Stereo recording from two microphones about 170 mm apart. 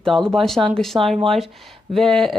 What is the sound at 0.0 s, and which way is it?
Speech, 5° left (ahead or behind).